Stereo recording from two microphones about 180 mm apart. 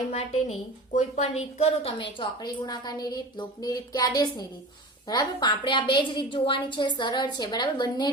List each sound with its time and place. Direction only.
0.1 s a woman's voice: 35° left (ahead or behind)